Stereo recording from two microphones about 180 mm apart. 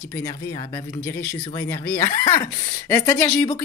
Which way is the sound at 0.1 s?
20° left (ahead or behind).